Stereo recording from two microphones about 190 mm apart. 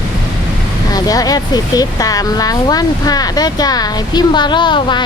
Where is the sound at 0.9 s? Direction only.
20° left (ahead or behind).